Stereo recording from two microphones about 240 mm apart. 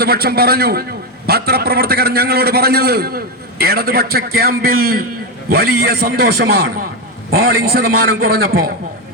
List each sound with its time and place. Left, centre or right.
0.0 s a man's voice: right